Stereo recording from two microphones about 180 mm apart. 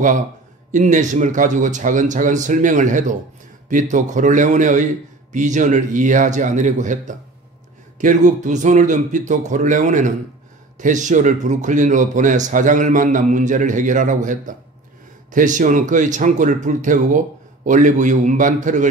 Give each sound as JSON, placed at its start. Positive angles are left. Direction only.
{"t": 0.7, "sound": "a man's voice", "side_deg": -45}